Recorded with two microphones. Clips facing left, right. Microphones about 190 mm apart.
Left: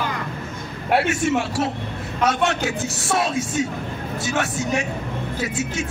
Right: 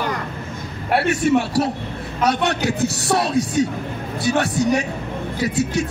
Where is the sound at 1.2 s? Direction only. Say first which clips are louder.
Right 4 dB; 35° right (ahead or behind).